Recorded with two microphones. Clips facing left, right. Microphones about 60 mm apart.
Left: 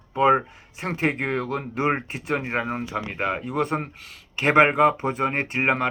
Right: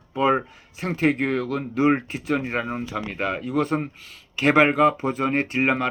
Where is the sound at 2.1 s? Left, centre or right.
Left.